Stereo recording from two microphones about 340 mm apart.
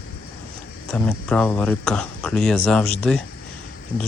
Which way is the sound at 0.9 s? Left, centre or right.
Centre.